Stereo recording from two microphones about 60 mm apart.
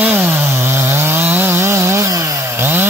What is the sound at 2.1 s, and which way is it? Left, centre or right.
Chainsaw, right.